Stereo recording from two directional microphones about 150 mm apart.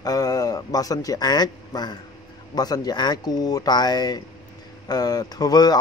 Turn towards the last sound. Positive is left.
turn(degrees=25)  # may be behind; listen again after turning